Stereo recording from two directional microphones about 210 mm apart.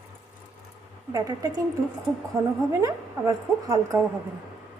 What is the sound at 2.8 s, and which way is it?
A woman's voice, 15° right (ahead or behind).